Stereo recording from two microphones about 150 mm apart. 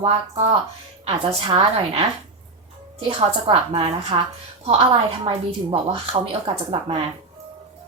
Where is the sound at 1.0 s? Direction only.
40° right (ahead or behind).